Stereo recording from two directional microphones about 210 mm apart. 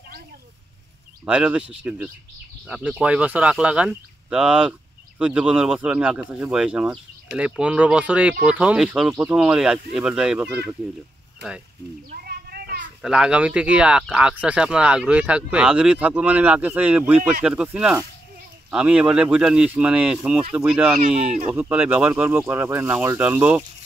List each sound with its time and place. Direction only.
1.2 s speech: 5° right (ahead or behind)
12.3 s children playing: 45° right (ahead or behind)
13.0 s speech: 5° right (ahead or behind)